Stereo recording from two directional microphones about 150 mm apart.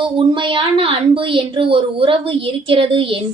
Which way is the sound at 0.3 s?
35° right (ahead or behind).